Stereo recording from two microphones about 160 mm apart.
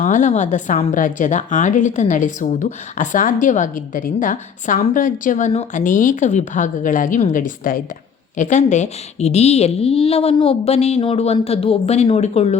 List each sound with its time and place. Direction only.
0.0 s a woman's voice: 50° left (ahead or behind)
8.4 s a woman's voice: 50° left (ahead or behind)